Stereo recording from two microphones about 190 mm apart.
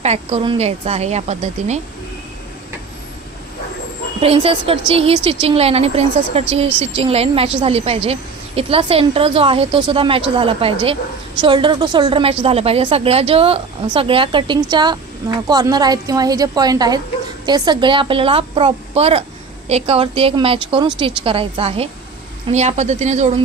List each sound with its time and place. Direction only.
0.0 s a woman's voice: 35° right (ahead or behind)
4.2 s a woman's voice: 30° right (ahead or behind)